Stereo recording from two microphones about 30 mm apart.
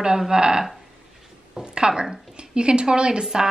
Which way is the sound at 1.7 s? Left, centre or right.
Right.